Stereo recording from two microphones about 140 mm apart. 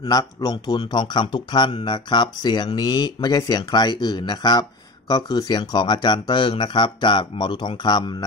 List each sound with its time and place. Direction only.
0.0 s speech: 25° left (ahead or behind)